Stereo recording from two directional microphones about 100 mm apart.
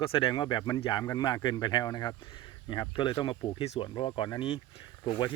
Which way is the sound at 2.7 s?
55° left (ahead or behind).